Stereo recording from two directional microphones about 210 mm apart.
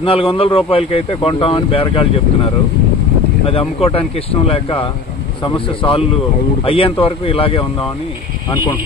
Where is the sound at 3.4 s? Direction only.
25° left (ahead or behind).